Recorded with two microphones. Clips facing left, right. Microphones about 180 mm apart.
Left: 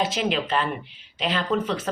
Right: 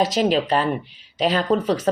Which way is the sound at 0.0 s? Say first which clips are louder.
Right 6 dB; 40° right (ahead or behind).